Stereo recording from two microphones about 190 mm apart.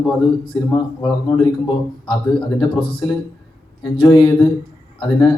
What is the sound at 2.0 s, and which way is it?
Speech, 5° left (ahead or behind).